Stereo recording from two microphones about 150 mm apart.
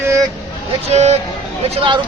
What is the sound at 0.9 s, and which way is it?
Speech, 45° right (ahead or behind).